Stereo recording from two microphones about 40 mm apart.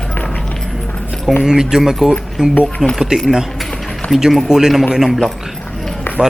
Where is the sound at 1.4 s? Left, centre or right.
Centre.